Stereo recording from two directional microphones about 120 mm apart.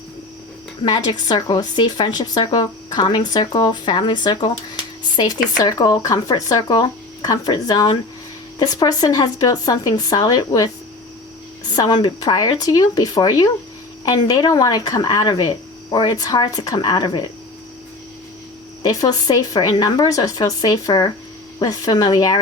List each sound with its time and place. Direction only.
0.9 s a woman's voice: 35° left (ahead or behind)
11.8 s a woman's voice: 40° left (ahead or behind)
18.9 s a woman's voice: 30° left (ahead or behind)